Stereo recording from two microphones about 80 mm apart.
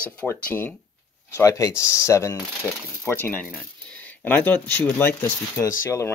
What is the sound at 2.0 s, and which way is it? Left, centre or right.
Speech, left.